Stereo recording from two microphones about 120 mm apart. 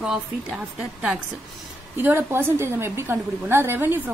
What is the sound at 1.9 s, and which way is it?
A woman's voice, 20° right (ahead or behind).